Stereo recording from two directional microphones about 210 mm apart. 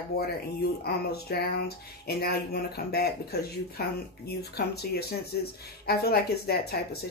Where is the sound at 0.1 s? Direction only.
50° left (ahead or behind).